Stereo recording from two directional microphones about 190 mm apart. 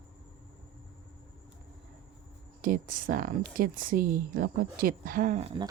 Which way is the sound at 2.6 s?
45° right (ahead or behind).